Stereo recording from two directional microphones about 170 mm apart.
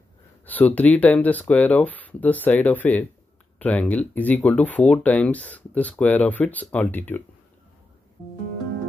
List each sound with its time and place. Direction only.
0.5 s speech: 10° left (ahead or behind)